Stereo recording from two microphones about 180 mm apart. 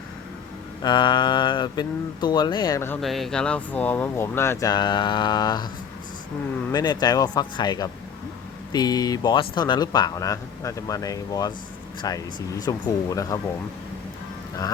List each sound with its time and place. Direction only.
0.8 s speech: 25° left (ahead or behind)
3.0 s speech: centre (ahead or behind); by 5.6 s 25° left (ahead or behind)
6.7 s speech: 20° left (ahead or behind)